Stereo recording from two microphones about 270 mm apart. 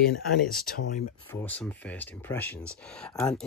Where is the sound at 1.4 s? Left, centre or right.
Centre.